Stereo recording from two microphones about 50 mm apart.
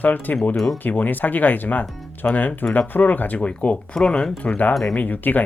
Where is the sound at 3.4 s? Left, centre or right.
Left.